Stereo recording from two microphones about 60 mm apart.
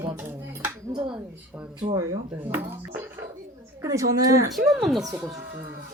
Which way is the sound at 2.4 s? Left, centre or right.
Right.